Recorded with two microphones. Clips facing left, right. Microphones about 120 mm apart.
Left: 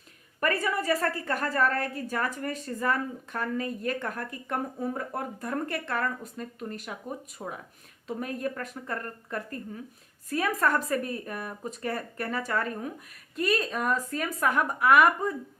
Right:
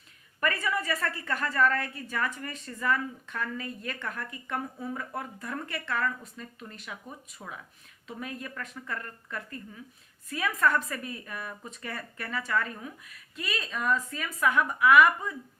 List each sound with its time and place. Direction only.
0.3 s a woman's voice: 40° left (ahead or behind)